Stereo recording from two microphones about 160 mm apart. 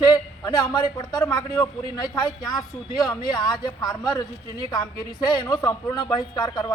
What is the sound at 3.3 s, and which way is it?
A man's voice, 25° left (ahead or behind).